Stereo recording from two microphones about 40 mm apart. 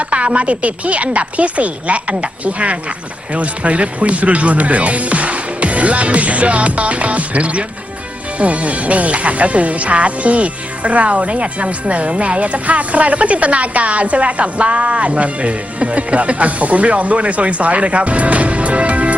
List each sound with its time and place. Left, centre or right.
0.0 s speech: right